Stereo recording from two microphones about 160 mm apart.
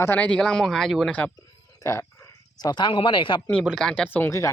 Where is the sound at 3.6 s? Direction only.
Centre (ahead or behind).